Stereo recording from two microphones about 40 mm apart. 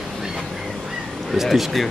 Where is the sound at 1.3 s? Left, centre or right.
Centre.